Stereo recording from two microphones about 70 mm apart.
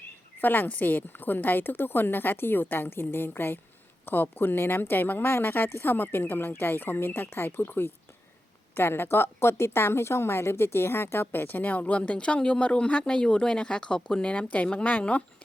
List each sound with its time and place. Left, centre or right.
0.4 s a woman's voice: left